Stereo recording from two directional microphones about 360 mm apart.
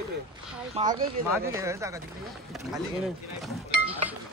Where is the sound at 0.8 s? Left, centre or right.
Centre.